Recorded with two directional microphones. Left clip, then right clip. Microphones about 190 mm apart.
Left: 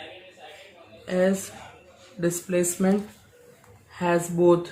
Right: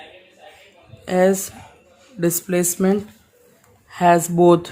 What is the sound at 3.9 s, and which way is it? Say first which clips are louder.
Speech: right 9 dB; 60° right (ahead or behind).